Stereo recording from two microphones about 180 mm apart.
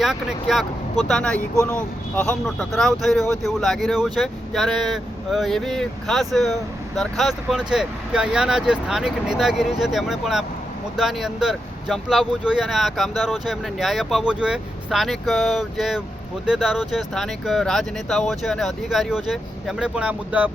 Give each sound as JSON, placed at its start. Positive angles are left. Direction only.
{"t": 0.0, "sound": "speech", "side_deg": -5}